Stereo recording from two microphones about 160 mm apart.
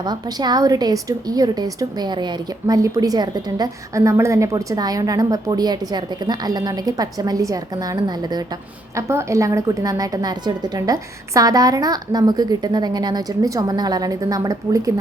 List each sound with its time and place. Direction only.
0.0 s a woman's voice: 25° right (ahead or behind)